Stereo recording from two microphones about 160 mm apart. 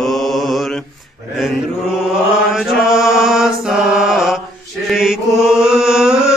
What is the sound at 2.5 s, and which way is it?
Mantra, 5° right (ahead or behind).